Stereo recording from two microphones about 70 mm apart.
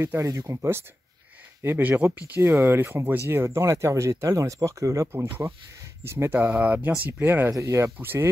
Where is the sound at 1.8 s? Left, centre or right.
Right.